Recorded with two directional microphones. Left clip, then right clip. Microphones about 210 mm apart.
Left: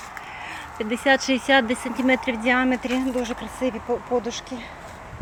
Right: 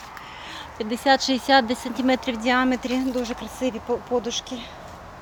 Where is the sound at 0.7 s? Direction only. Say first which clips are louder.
Even; 15° right (ahead or behind).